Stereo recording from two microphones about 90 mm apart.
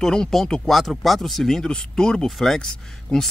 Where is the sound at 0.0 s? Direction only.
5° left (ahead or behind).